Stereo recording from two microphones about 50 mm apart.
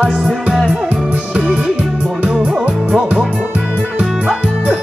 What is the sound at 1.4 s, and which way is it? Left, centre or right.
Music, centre.